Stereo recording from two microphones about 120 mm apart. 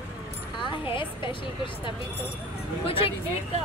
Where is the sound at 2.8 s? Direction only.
50° left (ahead or behind).